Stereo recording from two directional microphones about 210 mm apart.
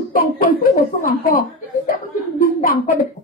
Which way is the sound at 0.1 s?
40° left (ahead or behind).